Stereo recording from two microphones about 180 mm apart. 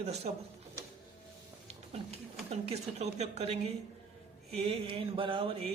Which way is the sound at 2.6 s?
35° right (ahead or behind).